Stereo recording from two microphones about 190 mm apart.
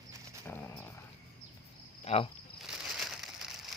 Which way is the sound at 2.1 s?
35° left (ahead or behind).